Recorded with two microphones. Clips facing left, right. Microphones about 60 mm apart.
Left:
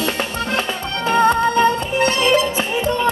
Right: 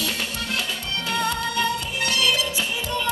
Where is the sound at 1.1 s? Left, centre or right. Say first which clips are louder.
Left 11 dB; left.